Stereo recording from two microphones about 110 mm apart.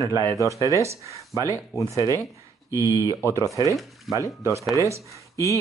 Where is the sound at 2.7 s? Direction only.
30° left (ahead or behind).